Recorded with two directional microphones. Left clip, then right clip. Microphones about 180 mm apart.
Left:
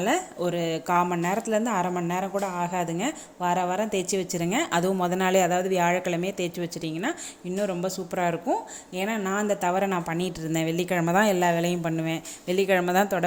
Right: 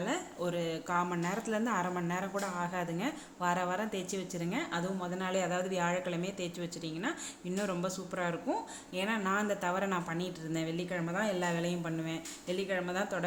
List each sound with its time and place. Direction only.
0.0 s speech: 30° left (ahead or behind)
7.5 s speech: 15° left (ahead or behind); by 13.2 s 35° left (ahead or behind)